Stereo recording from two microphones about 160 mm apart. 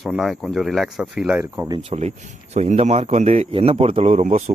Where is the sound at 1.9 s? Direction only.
40° right (ahead or behind).